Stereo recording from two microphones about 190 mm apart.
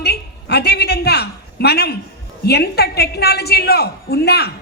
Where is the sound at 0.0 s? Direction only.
60° left (ahead or behind).